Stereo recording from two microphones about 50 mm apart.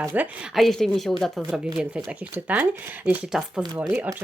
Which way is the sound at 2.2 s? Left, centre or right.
Right.